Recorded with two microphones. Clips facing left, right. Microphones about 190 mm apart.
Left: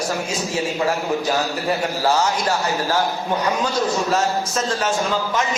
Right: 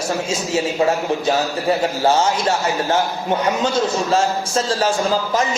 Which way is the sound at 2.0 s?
25° right (ahead or behind).